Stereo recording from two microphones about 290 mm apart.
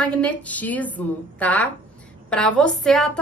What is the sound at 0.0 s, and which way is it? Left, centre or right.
Speech, centre.